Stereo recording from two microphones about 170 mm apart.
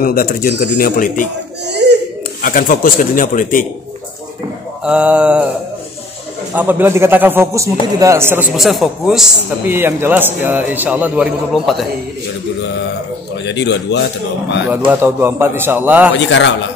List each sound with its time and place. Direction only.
0.0 s speech: 60° left (ahead or behind)
1.7 s baby cry: 85° right
2.4 s speech: 55° left (ahead or behind)
4.8 s a man's voice: 5° right (ahead or behind)
6.5 s a man's voice: 10° right (ahead or behind)
8.5 s a man's voice: centre (ahead or behind)
13.5 s a man's voice: 90° left
14.9 s a man's voice: 15° right (ahead or behind)
16.2 s a man's voice: 90° left